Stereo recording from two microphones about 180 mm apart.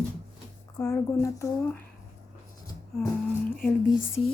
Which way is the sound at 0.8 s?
15° left (ahead or behind).